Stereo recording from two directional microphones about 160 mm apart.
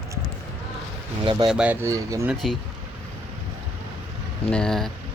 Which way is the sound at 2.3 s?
Centre (ahead or behind).